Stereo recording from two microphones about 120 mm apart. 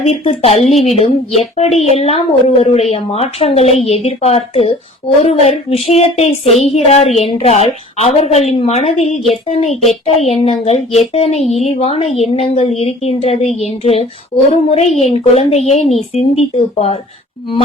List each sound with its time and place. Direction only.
0.0 s speech: 60° left (ahead or behind)